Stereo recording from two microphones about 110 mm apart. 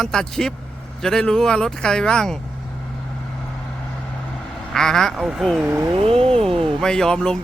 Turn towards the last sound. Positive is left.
turn(degrees=5)  # may be behind; listen again after turning